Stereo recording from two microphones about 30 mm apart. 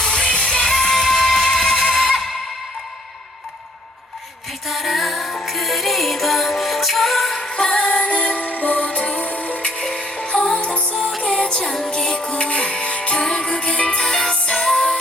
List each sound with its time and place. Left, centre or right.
0.1 s music: left
0.4 s music: centre
4.7 s music: centre
7.7 s music: left
8.8 s music: left
9.1 s music: left
10.0 s music: left
11.3 s music: left
11.6 s music: centre
11.9 s music: left
13.2 s music: left
14.0 s music: centre